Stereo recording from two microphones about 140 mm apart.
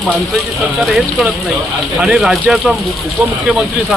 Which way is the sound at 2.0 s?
5° right (ahead or behind).